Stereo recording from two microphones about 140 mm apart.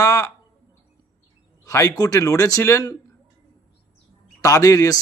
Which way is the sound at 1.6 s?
25° left (ahead or behind).